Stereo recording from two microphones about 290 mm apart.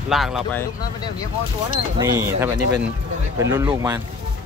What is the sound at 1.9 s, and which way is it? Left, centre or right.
Speech, centre.